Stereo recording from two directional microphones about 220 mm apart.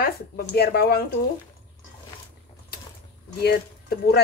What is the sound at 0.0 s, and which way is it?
Speech, 45° left (ahead or behind).